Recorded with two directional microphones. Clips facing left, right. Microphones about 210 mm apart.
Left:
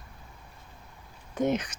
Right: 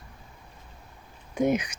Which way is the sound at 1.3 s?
10° right (ahead or behind).